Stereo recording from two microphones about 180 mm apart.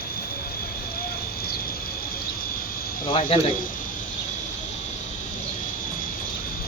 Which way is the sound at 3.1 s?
30° left (ahead or behind).